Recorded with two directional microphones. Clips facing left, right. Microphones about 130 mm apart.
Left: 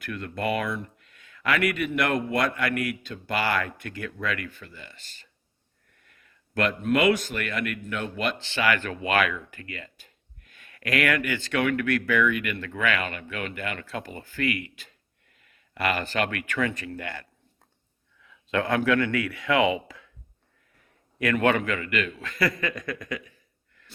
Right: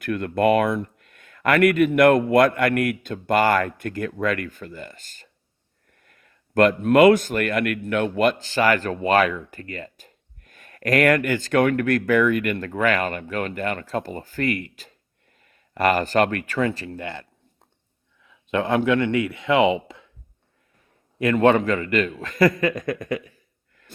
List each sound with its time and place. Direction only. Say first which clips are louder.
0.0 s a man's voice: right 10 dB; 50° right (ahead or behind); by 17.2 s 25° right (ahead or behind)
18.3 s speech: right 4 dB; 20° right (ahead or behind)
21.2 s a man's voice: right 6 dB; 25° right (ahead or behind); by 23.0 s 45° right (ahead or behind)
23.0 s a man's voice: right 7 dB; 25° right (ahead or behind)